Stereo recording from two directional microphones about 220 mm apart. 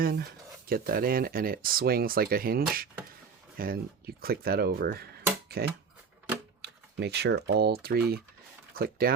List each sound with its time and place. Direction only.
0.0 s speech: 45° right (ahead or behind)